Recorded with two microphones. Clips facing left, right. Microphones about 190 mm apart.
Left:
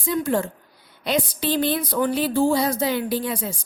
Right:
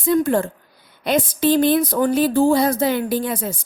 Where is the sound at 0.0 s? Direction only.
50° right (ahead or behind).